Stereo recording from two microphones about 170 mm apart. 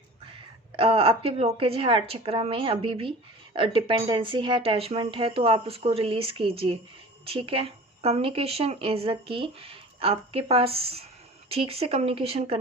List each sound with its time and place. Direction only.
0.8 s a woman's voice: 35° right (ahead or behind)